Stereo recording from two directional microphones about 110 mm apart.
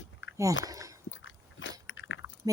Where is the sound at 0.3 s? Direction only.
30° right (ahead or behind).